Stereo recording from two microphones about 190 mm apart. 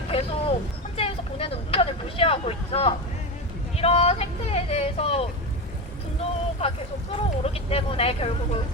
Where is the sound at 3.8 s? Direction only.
30° left (ahead or behind).